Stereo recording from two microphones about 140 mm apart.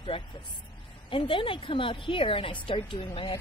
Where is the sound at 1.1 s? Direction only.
40° left (ahead or behind).